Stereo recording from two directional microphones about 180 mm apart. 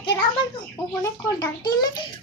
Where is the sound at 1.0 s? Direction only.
20° left (ahead or behind).